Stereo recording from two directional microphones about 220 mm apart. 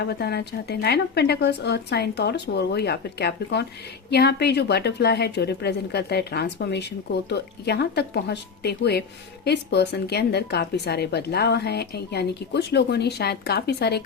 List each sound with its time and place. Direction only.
0.0 s speech: 45° left (ahead or behind)